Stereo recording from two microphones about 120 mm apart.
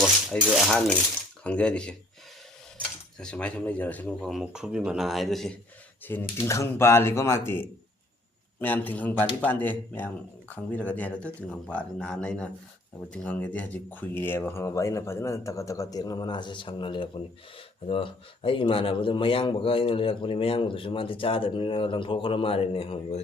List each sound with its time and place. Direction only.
0.0 s rattle: 5° right (ahead or behind)
1.5 s speech: 10° left (ahead or behind)
3.2 s speech: 10° left (ahead or behind)
4.3 s speech: 5° right (ahead or behind)
6.1 s speech: 20° left (ahead or behind); by 23.2 s 50° left (ahead or behind)